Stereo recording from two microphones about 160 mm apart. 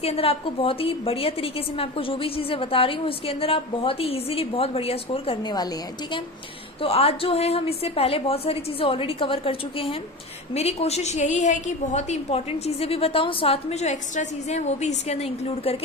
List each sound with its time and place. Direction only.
0.0 s a woman's voice: 40° left (ahead or behind)
6.8 s a woman's voice: 40° left (ahead or behind)